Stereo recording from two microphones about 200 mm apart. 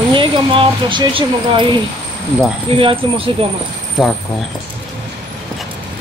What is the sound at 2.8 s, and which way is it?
Speech, 25° right (ahead or behind).